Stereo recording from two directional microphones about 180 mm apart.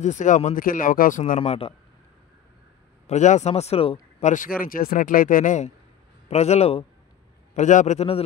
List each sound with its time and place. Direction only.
0.0 s speech: 40° left (ahead or behind)
1.4 s speech: 30° left (ahead or behind)
3.1 s speech: 40° left (ahead or behind)
4.2 s speech: 45° left (ahead or behind)